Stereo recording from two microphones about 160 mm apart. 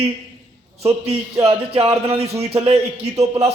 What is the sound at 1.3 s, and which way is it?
A man's voice, 35° right (ahead or behind).